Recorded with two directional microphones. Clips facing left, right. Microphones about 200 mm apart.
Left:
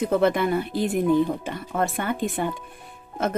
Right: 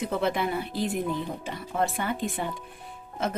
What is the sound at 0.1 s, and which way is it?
Speech, 50° left (ahead or behind).